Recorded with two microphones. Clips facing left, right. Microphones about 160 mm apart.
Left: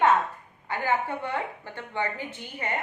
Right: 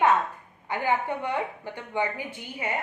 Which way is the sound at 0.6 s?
15° right (ahead or behind).